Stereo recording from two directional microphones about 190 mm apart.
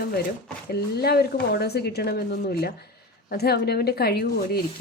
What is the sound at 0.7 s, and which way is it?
A woman's voice, 55° left (ahead or behind).